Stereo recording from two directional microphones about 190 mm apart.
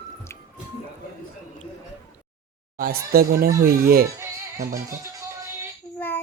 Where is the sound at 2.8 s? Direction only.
50° right (ahead or behind).